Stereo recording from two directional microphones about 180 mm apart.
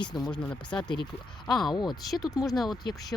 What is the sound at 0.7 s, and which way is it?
Speech, 25° left (ahead or behind).